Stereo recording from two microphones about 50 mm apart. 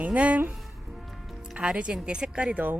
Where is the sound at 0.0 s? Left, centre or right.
Right.